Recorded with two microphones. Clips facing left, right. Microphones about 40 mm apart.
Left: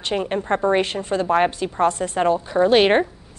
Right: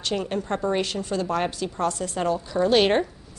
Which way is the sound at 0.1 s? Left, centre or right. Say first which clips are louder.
Left 6 dB; left.